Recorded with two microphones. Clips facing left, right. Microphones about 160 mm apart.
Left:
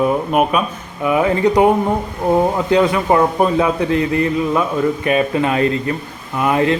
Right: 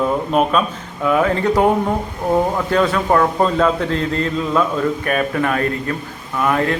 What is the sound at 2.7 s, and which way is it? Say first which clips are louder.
Speech: left 2 dB; 15° left (ahead or behind).